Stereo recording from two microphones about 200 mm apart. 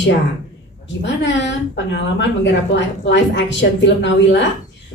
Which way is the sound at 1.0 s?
60° left (ahead or behind).